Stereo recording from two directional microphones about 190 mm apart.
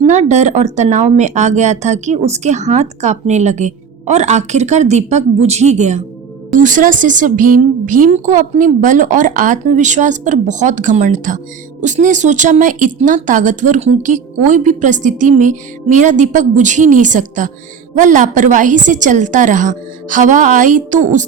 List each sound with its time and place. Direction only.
0.1 s a woman's voice: 40° right (ahead or behind)